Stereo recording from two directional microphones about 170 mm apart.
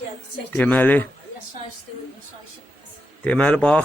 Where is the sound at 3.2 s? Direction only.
5° left (ahead or behind).